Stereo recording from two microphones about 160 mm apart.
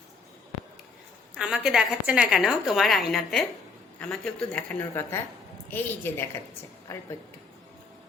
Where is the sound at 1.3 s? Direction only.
5° right (ahead or behind); by 6.3 s 15° left (ahead or behind).